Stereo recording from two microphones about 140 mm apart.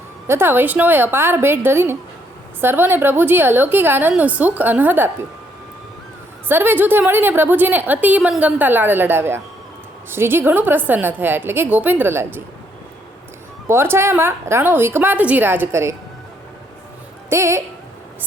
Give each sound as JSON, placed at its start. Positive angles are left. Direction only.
{"t": 0.3, "sound": "a woman's voice", "side_deg": -15}
{"t": 6.5, "sound": "a woman's voice", "side_deg": -15}
{"t": 13.7, "sound": "a woman's voice", "side_deg": -15}
{"t": 17.2, "sound": "speech", "side_deg": -20}